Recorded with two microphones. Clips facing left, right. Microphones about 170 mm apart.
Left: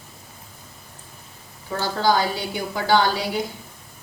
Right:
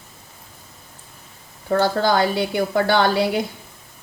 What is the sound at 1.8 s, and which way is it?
Speech, 60° right (ahead or behind).